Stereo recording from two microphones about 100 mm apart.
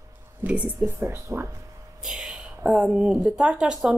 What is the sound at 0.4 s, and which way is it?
Speech, 15° right (ahead or behind).